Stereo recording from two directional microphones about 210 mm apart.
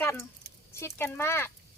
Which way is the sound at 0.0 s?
10° left (ahead or behind).